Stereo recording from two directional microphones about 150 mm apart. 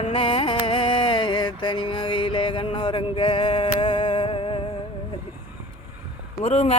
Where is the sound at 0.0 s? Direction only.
40° left (ahead or behind).